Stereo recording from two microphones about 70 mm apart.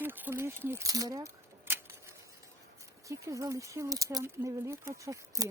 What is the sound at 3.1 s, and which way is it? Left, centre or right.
Speech, right.